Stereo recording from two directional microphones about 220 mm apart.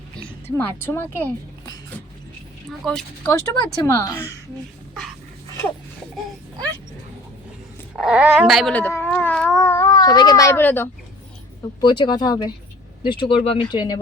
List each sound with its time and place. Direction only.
0.4 s speech: 10° left (ahead or behind)
2.8 s speech: centre (ahead or behind)
3.3 s speech: 15° left (ahead or behind)
7.9 s speech: 5° right (ahead or behind)
11.8 s speech: 20° left (ahead or behind)